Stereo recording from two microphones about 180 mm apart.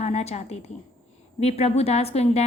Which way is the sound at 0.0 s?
35° left (ahead or behind).